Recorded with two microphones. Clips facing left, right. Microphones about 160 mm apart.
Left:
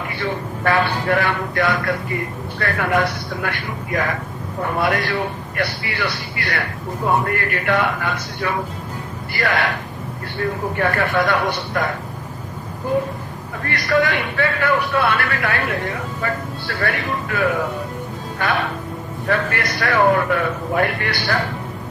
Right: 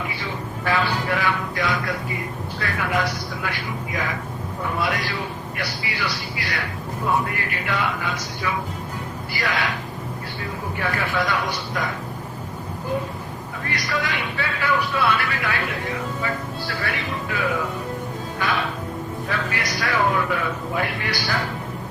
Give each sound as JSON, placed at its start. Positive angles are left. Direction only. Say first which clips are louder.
{"t": 0.0, "sound": "a man's voice", "louder": "left 5 dB", "side_deg": 55}
{"t": 13.7, "sound": "a man's voice", "louder": "left 8 dB", "side_deg": 60}